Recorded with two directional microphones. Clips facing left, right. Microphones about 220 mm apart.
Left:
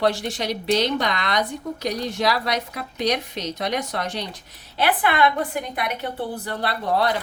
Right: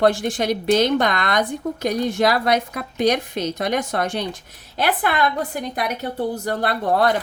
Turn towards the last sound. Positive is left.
turn(degrees=-50)  # may be behind; listen again after turning